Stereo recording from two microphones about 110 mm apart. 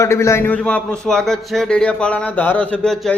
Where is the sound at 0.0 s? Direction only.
25° left (ahead or behind).